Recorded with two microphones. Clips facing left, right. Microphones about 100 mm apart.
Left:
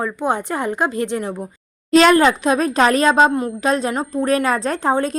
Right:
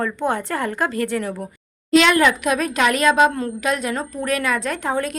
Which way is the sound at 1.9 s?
40° left (ahead or behind).